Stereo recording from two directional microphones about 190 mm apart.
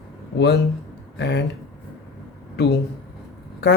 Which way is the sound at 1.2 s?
65° left (ahead or behind).